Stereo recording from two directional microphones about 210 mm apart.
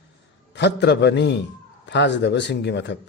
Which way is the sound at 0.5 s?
55° left (ahead or behind).